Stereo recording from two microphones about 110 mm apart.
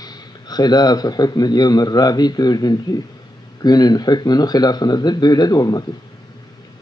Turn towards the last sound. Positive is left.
turn(degrees=35)  # may be behind; listen again after turning